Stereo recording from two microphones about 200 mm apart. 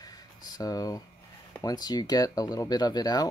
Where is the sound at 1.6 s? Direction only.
20° left (ahead or behind).